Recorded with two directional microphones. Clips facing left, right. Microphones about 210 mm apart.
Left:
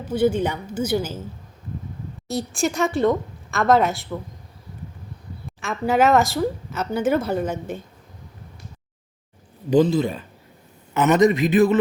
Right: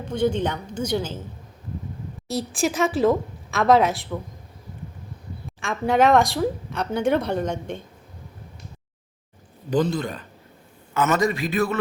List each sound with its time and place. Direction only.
0.0 s a woman's voice: 5° left (ahead or behind)
2.2 s a woman's voice: centre (ahead or behind)
5.5 s a woman's voice: centre (ahead or behind)
9.6 s a woman's voice: 10° left (ahead or behind)
10.9 s a man's voice: 20° left (ahead or behind)